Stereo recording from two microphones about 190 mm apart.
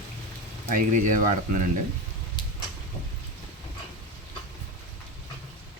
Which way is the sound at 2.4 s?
25° left (ahead or behind).